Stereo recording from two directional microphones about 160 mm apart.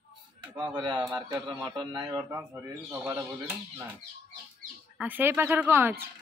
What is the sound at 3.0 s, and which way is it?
Speech, 10° right (ahead or behind).